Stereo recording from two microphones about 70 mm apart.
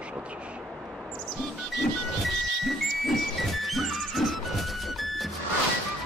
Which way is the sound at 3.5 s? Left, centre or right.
Centre.